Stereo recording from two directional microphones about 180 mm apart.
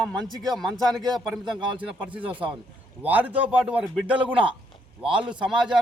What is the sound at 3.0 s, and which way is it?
A man's voice, 10° right (ahead or behind).